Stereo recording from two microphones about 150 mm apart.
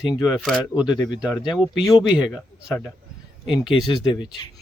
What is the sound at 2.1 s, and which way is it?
Speech, 5° right (ahead or behind).